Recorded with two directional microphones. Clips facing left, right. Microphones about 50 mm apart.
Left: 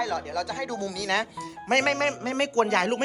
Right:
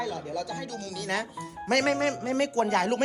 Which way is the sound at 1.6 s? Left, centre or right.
Left.